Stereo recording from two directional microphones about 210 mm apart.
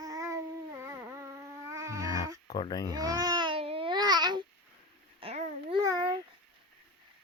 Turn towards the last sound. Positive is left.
turn(degrees=-20)  # may be behind; listen again after turning